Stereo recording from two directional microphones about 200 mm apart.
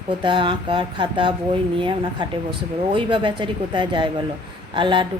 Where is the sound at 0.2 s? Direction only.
25° right (ahead or behind).